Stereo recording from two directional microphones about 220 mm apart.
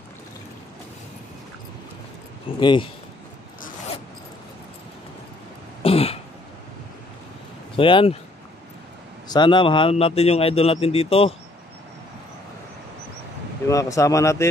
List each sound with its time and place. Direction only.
2.6 s speech: 20° left (ahead or behind)
5.8 s throat clearing: 25° left (ahead or behind)
7.7 s speech: 25° left (ahead or behind)
9.3 s speech: 20° left (ahead or behind)
13.7 s speech: 15° left (ahead or behind)